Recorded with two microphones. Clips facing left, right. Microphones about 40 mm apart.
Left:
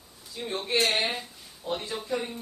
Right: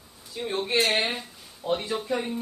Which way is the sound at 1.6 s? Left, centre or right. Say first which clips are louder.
Right 5 dB; right.